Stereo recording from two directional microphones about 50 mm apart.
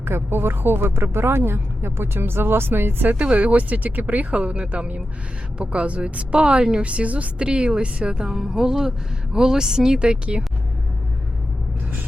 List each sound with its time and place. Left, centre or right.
0.0 s speech: right
3.3 s a woman's voice: right